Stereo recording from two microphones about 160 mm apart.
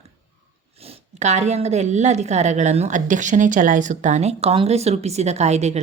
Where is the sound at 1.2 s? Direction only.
45° right (ahead or behind).